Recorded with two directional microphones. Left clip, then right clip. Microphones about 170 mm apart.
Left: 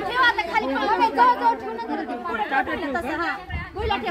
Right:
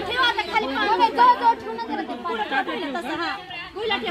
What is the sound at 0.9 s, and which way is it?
Speech, 45° right (ahead or behind).